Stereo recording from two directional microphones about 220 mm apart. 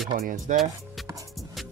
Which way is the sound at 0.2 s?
40° right (ahead or behind).